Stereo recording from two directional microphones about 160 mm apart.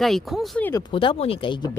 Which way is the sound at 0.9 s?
35° left (ahead or behind).